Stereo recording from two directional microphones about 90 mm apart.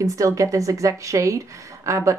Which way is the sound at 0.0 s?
35° right (ahead or behind).